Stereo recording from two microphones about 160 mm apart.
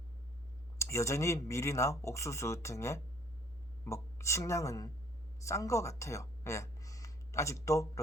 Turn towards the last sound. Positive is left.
turn(degrees=20)  # may be behind; listen again after turning